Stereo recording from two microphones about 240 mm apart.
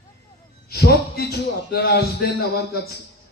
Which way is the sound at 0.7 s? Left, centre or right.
Left.